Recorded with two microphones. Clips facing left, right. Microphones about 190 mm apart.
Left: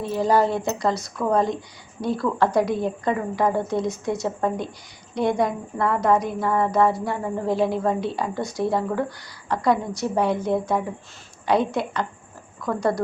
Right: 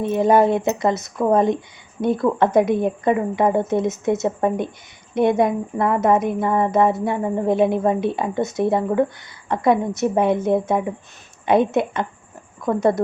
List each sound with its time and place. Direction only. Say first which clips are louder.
0.0 s a woman's voice: right 4 dB; 20° right (ahead or behind)